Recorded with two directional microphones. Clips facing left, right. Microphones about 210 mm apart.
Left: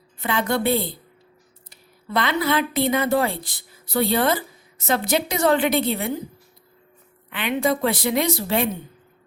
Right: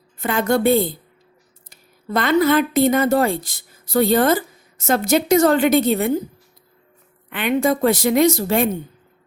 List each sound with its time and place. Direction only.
0.2 s a woman's voice: 45° right (ahead or behind)
7.3 s a woman's voice: 50° right (ahead or behind)